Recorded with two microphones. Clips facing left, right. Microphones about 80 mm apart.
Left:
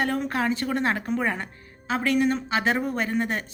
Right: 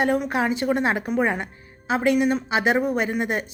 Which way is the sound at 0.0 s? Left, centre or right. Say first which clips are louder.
Right 4 dB; centre.